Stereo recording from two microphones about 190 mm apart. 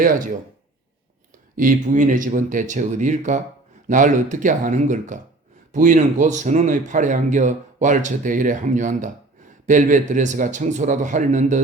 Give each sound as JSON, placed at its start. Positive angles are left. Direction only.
{"t": 1.5, "sound": "a man's voice", "side_deg": -45}